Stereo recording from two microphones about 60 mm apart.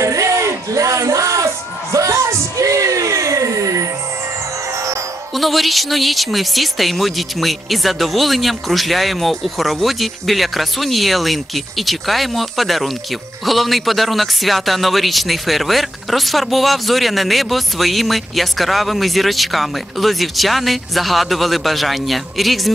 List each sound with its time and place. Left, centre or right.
0.0 s music: right
5.3 s speech: centre